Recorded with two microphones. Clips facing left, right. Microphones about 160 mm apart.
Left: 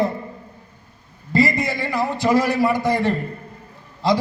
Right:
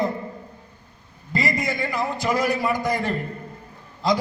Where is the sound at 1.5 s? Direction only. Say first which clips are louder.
Left 2 dB; 30° left (ahead or behind).